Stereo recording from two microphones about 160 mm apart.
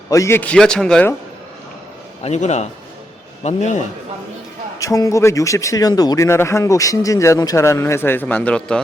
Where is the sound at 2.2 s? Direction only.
45° left (ahead or behind).